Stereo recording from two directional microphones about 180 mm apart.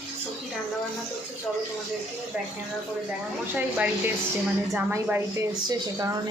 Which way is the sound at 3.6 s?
5° right (ahead or behind).